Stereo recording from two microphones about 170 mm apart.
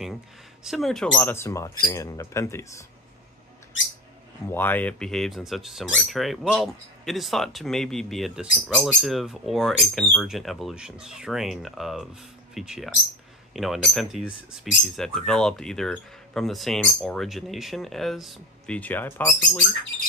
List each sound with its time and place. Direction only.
0.7 s speech: centre (ahead or behind); by 2.8 s 15° left (ahead or behind)
4.5 s speech: 10° left (ahead or behind)